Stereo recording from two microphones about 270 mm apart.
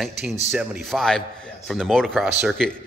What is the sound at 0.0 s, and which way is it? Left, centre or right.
Speech, centre.